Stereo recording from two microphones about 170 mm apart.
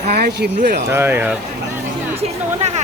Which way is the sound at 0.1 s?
70° right (ahead or behind).